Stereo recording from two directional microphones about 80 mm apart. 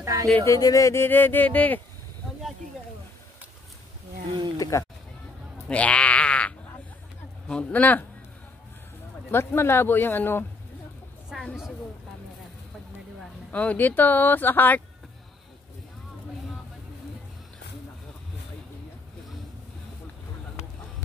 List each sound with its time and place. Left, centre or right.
0.0 s speech: right
0.5 s speech: left
1.0 s speech: left
4.6 s speech: left
5.7 s a sound: centre
7.4 s speech: centre
9.3 s speech: left
11.3 s speech: centre
13.5 s speech: centre